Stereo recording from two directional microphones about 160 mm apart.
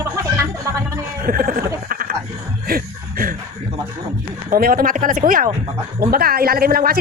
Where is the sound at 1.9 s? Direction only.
65° right (ahead or behind).